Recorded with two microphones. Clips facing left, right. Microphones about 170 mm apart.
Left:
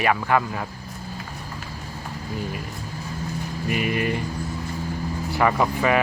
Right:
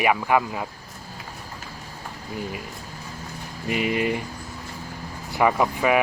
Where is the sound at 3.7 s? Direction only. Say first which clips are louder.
Right 1 dB; 20° right (ahead or behind).